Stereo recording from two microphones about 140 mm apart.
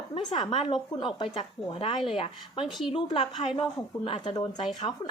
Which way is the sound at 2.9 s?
40° left (ahead or behind).